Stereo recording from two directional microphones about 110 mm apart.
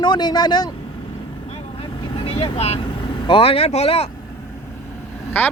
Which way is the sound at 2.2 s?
65° left (ahead or behind).